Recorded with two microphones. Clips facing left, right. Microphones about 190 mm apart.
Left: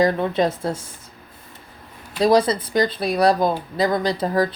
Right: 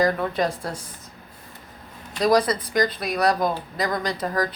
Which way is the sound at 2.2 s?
25° left (ahead or behind).